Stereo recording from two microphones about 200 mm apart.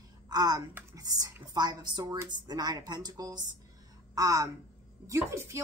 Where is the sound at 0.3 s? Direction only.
20° right (ahead or behind).